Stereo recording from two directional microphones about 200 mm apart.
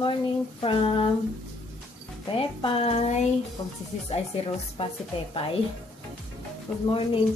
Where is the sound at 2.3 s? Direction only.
25° left (ahead or behind).